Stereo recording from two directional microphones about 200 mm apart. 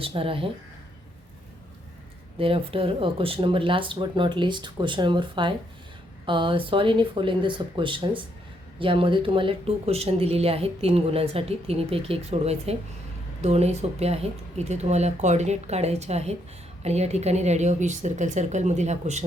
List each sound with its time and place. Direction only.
0.0 s speech: 25° right (ahead or behind)
2.4 s speech: 30° right (ahead or behind)